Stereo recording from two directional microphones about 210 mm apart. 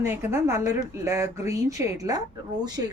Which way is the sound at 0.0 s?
10° right (ahead or behind).